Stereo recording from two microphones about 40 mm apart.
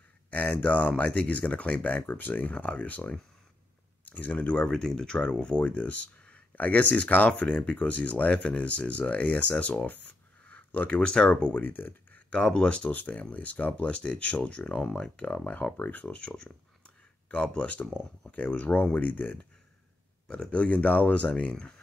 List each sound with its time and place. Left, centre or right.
0.3 s speech: left
2.5 s speech: left
4.6 s speech: centre; by 10.8 s left
11.0 s speech: left
11.5 s speech: left
12.3 s speech: left
12.9 s speech: left
13.8 s speech: left
15.2 s speech: left
15.5 s speech: left
16.2 s speech: left
16.8 s a sound: left
18.3 s speech: left
20.2 s speech: left